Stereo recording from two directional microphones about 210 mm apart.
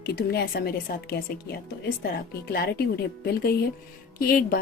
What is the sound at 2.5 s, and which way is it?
A woman's voice, 50° left (ahead or behind).